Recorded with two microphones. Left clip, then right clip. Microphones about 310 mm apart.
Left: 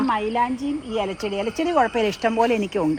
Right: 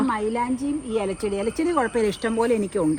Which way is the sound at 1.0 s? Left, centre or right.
Centre.